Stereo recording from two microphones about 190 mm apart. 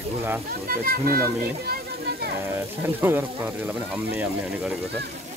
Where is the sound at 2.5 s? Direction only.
10° right (ahead or behind).